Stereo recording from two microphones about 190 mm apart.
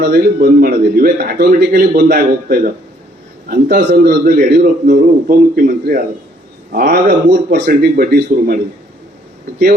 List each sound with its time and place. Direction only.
0.0 s a man's voice: 50° right (ahead or behind)
4.1 s a man's voice: 45° right (ahead or behind)
7.3 s a man's voice: 60° right (ahead or behind)
7.7 s a man's voice: 50° right (ahead or behind)